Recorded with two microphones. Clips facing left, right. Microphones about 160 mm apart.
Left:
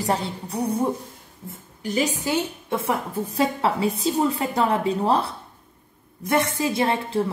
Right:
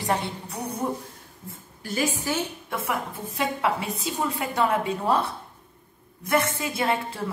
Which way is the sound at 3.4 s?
30° left (ahead or behind).